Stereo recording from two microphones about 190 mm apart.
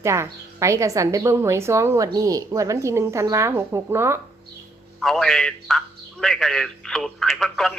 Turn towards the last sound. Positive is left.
turn(degrees=0)  # may be behind; listen again after turning